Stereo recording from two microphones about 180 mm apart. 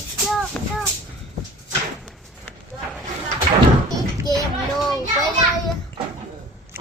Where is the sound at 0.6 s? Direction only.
10° left (ahead or behind).